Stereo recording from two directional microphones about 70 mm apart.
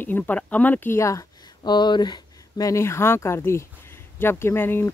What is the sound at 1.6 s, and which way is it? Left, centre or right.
Speech, left.